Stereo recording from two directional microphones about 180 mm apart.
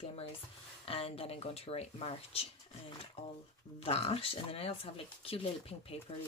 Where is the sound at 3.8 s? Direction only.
35° left (ahead or behind).